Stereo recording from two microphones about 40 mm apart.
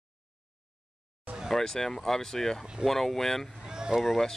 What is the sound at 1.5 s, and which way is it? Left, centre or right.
Speech, centre.